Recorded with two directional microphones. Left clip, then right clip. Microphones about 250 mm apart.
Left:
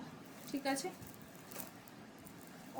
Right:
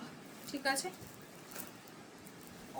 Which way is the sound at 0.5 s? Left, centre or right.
Right.